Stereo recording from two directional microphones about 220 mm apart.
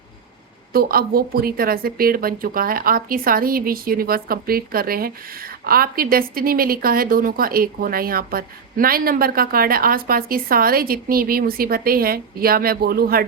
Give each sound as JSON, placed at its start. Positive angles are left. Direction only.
{"t": 0.7, "sound": "a woman's voice", "side_deg": -40}